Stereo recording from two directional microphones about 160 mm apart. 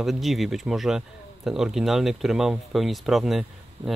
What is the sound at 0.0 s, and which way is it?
Speech, centre (ahead or behind).